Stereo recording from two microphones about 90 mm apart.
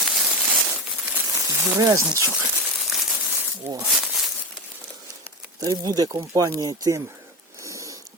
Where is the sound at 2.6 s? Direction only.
5° right (ahead or behind).